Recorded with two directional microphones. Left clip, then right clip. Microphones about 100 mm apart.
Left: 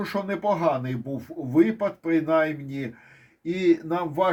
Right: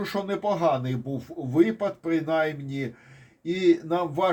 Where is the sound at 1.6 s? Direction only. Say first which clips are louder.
Even; 20° right (ahead or behind).